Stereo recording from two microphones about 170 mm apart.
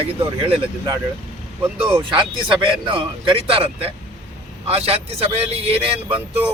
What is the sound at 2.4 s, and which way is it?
Speech, 30° right (ahead or behind).